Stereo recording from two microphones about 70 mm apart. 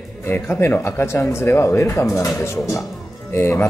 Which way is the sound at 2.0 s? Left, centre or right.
Left.